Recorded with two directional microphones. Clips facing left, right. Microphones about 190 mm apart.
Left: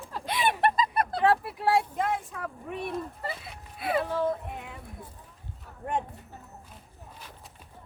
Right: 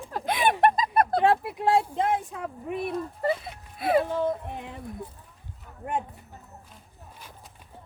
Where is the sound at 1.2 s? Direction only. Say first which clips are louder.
Right 2 dB; 15° right (ahead or behind).